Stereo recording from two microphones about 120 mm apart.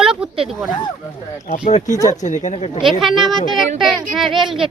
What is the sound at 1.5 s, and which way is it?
Speech, 80° left.